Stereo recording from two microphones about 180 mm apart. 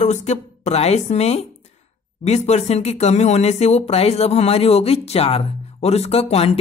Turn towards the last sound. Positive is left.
turn(degrees=35)  # may be behind; listen again after turning